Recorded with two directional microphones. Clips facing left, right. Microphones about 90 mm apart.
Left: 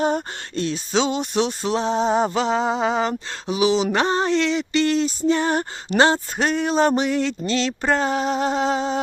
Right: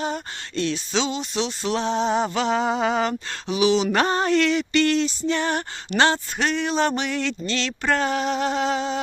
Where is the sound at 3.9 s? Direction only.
20° left (ahead or behind).